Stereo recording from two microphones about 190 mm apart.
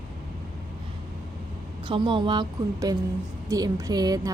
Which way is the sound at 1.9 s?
25° right (ahead or behind).